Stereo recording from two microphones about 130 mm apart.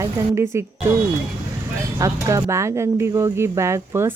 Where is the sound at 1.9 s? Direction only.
25° right (ahead or behind).